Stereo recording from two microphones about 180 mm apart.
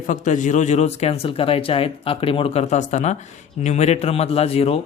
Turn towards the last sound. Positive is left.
turn(degrees=35)  # may be behind; listen again after turning